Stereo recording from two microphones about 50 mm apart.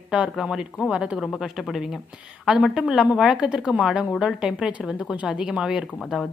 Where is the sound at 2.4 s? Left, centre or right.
Centre.